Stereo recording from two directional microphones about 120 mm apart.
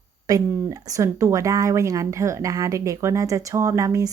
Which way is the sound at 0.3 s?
30° right (ahead or behind).